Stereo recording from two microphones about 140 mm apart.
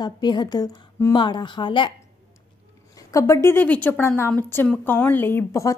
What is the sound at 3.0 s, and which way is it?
A woman's voice, 20° left (ahead or behind).